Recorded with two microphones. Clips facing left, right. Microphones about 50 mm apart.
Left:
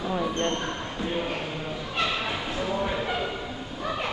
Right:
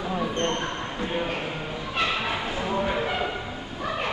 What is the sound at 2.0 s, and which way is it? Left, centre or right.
Bow-wow, centre.